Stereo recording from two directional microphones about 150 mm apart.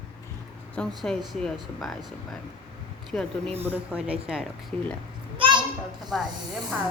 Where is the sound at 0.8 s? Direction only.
5° left (ahead or behind).